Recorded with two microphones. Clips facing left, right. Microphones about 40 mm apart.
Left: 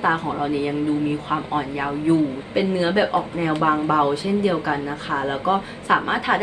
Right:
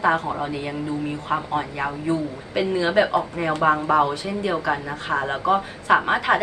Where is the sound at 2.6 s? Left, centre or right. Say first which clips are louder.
Even; left.